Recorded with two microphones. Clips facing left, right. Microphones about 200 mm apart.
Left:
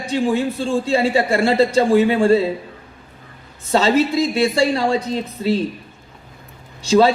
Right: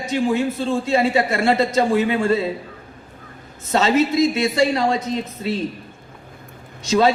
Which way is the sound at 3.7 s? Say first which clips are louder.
Left 1 dB; 35° left (ahead or behind).